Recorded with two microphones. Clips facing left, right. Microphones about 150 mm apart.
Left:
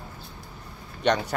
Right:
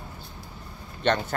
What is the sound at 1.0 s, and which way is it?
Speech, 10° left (ahead or behind).